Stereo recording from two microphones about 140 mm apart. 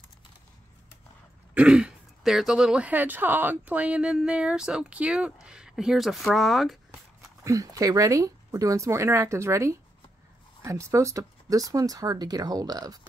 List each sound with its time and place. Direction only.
1.5 s speech: 10° right (ahead or behind)
7.4 s speech: 25° right (ahead or behind)